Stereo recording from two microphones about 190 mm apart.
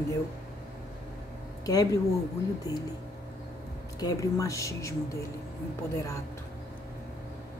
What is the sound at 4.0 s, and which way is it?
Speech, 20° left (ahead or behind).